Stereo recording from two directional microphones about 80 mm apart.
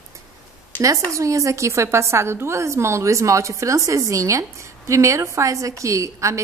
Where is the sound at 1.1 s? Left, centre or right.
Right.